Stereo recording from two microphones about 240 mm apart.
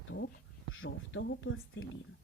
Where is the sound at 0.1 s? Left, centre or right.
Left.